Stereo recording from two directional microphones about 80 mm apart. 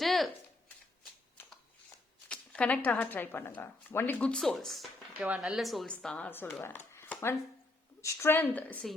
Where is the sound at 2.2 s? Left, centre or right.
Centre.